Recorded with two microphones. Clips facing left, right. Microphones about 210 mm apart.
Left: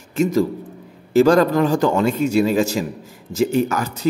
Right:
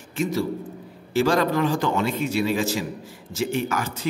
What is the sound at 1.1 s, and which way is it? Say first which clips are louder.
A man's voice: left 7 dB; 45° left (ahead or behind).